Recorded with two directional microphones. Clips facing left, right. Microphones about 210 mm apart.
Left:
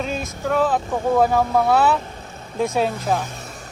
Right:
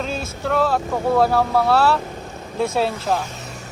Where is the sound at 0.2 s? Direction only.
15° left (ahead or behind).